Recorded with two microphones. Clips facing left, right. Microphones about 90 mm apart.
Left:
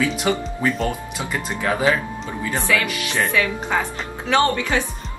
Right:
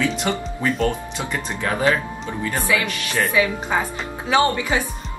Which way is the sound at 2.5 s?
10° right (ahead or behind).